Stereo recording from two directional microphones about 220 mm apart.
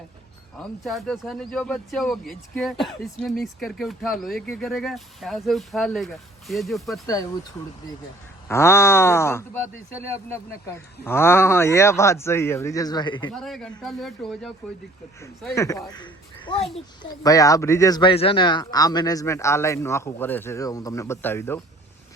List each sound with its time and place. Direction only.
0.6 s speech: centre (ahead or behind)
8.4 s speech: 10° left (ahead or behind)
13.3 s speech: centre (ahead or behind)
15.5 s speech: 15° left (ahead or behind)
16.5 s a child's voice: 25° left (ahead or behind); by 21.6 s 10° left (ahead or behind)